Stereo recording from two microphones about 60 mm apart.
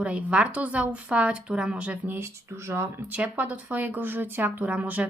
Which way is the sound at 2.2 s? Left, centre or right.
Right.